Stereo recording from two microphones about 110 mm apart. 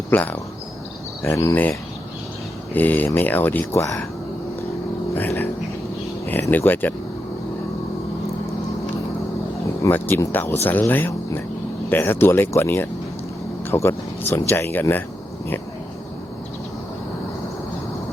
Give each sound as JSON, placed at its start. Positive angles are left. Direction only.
{"t": 0.1, "sound": "speech", "side_deg": 15}
{"t": 2.7, "sound": "speech", "side_deg": 15}
{"t": 5.1, "sound": "speech", "side_deg": 20}
{"t": 6.5, "sound": "speech", "side_deg": 15}
{"t": 9.8, "sound": "speech", "side_deg": 25}